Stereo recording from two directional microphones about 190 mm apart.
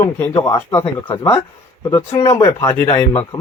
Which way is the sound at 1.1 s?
30° left (ahead or behind).